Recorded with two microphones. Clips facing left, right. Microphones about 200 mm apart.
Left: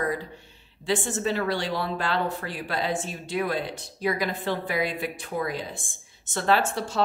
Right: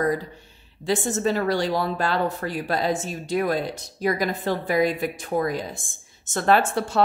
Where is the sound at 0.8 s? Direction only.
40° right (ahead or behind).